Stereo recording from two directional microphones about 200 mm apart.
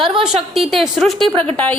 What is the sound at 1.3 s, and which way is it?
Speech, 25° right (ahead or behind).